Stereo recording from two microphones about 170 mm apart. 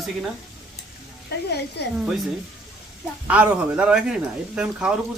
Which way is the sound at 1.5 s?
75° left (ahead or behind).